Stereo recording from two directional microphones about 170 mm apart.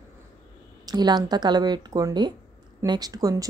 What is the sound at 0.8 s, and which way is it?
Speech, 25° right (ahead or behind).